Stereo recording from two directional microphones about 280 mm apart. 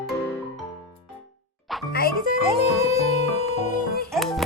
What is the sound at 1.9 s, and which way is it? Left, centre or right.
Music, left.